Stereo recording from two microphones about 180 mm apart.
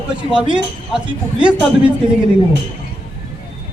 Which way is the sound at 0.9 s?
5° right (ahead or behind).